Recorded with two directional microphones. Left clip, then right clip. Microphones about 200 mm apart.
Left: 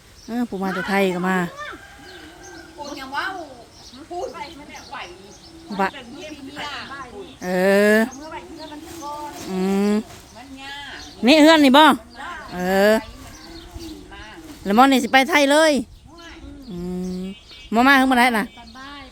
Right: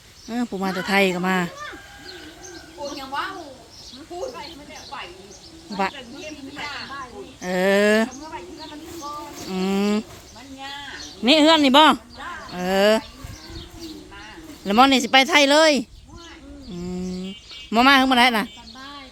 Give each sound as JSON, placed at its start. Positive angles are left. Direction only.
{"t": 0.3, "sound": "speech", "side_deg": 10}
{"t": 5.7, "sound": "speech", "side_deg": 15}
{"t": 7.4, "sound": "speech", "side_deg": 15}
{"t": 9.5, "sound": "speech", "side_deg": 10}
{"t": 11.2, "sound": "speech", "side_deg": 25}
{"t": 14.6, "sound": "speech", "side_deg": 15}
{"t": 16.8, "sound": "bird", "side_deg": 15}
{"t": 18.8, "sound": "a sound", "side_deg": -5}